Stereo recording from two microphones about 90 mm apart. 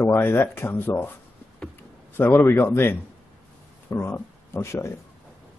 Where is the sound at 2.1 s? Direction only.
25° left (ahead or behind).